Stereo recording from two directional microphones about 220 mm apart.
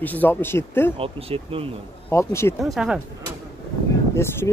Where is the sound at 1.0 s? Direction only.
25° right (ahead or behind).